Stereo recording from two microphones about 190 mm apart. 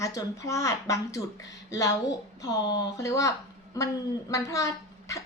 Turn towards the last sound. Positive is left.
turn(degrees=15)  # may be behind; listen again after turning